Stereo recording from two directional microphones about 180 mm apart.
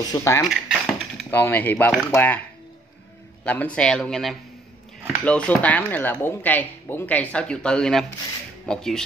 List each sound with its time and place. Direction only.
0.1 s speech: 20° left (ahead or behind)
0.5 s dishes: centre (ahead or behind)
1.3 s speech: 10° left (ahead or behind)
3.4 s speech: 10° left (ahead or behind)